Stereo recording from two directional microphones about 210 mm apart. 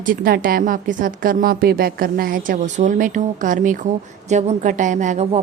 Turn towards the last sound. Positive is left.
turn(degrees=-35)  # may be behind; listen again after turning